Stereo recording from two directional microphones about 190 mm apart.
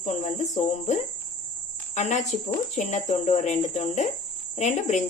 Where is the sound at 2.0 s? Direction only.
40° left (ahead or behind).